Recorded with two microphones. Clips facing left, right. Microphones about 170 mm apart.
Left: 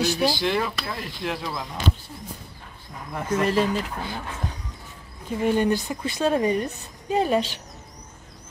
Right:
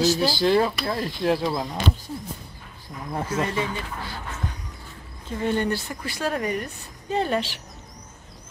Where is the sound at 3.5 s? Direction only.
90° left.